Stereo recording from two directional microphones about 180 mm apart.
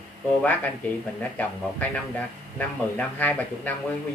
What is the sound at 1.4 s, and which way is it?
Speech, 10° left (ahead or behind).